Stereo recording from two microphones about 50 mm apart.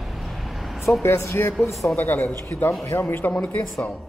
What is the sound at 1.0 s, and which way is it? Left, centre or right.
Speech, left.